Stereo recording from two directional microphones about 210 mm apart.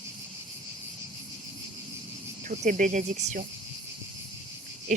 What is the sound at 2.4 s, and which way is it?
Speech, 40° right (ahead or behind).